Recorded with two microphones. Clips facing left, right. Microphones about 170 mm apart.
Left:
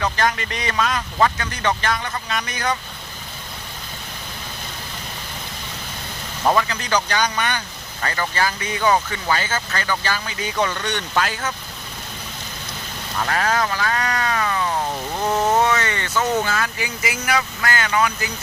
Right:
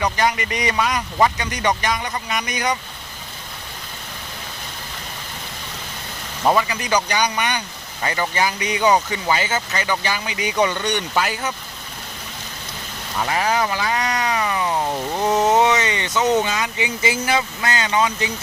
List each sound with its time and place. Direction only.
0.0 s speech: 10° right (ahead or behind)
6.4 s speech: 5° right (ahead or behind)
13.1 s speech: 10° right (ahead or behind)